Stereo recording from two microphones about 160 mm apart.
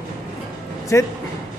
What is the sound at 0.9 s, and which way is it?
Speech, 15° left (ahead or behind).